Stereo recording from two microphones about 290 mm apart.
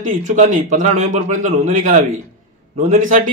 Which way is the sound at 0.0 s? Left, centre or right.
Right.